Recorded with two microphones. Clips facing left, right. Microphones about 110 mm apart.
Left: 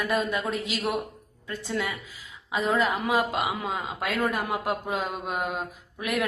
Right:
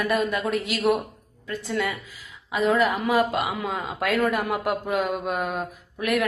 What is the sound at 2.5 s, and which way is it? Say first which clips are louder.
A woman's voice: right 3 dB; 25° left (ahead or behind).